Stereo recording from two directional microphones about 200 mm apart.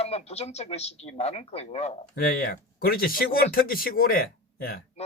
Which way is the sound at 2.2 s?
45° left (ahead or behind).